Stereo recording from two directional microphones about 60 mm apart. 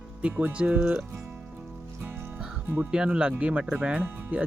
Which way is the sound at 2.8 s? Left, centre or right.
Centre.